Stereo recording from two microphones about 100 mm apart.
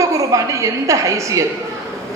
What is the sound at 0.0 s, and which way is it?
A woman's voice, 35° right (ahead or behind).